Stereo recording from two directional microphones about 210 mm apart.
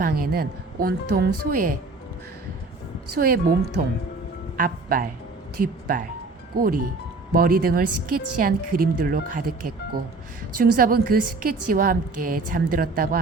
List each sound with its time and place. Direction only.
0.0 s a woman's voice: 45° right (ahead or behind)
3.2 s a woman's voice: 45° right (ahead or behind)